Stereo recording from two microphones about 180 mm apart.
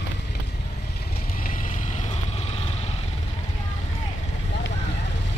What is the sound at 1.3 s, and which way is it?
Vehicle, 50° left (ahead or behind).